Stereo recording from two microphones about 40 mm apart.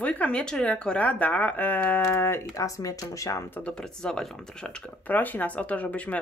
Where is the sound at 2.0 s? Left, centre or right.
Left.